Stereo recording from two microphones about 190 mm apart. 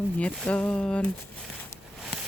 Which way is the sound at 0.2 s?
5° left (ahead or behind).